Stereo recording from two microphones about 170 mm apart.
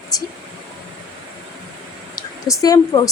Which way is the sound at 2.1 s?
20° left (ahead or behind).